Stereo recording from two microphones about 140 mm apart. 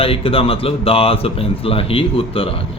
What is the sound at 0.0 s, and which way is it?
Speech, 45° left (ahead or behind).